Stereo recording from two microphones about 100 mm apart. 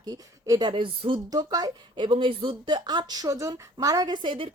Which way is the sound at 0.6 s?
60° right (ahead or behind).